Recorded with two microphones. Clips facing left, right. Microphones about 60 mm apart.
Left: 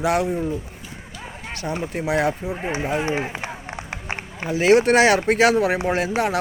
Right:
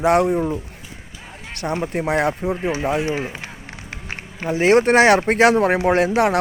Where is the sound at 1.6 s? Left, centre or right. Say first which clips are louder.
Right 4 dB; right.